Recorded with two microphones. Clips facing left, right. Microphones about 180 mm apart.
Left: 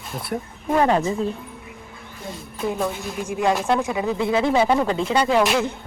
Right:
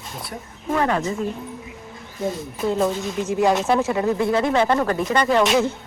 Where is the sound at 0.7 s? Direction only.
25° left (ahead or behind).